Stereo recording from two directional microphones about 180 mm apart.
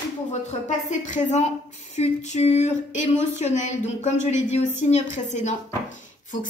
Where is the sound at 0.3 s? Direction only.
40° left (ahead or behind).